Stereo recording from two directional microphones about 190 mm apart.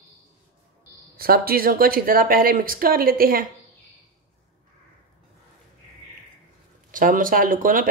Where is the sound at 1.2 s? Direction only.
50° right (ahead or behind).